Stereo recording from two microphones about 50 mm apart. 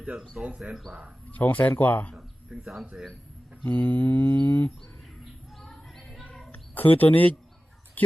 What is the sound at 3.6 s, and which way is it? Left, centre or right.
Mantra, left.